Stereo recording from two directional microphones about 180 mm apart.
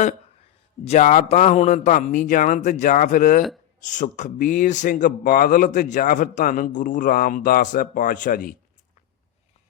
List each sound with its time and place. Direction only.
0.9 s a man's voice: 40° left (ahead or behind)